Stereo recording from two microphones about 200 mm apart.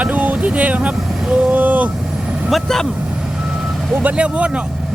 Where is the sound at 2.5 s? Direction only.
Centre (ahead or behind).